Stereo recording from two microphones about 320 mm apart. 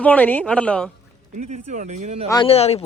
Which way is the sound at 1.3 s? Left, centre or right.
Right.